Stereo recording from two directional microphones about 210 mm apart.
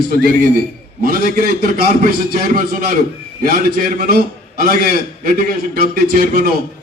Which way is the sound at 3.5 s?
45° right (ahead or behind).